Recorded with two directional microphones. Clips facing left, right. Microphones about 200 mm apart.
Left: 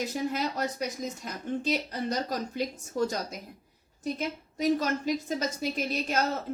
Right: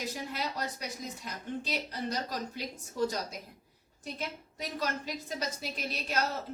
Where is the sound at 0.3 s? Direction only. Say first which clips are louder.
Left 6 dB; 45° left (ahead or behind).